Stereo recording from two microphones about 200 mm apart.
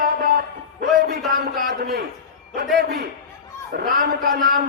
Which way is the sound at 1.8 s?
50° right (ahead or behind).